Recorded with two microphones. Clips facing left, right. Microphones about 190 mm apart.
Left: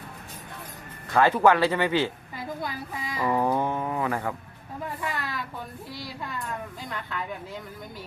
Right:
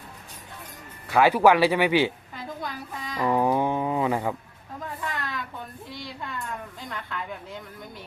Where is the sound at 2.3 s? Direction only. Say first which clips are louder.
Left 1 dB; 5° left (ahead or behind).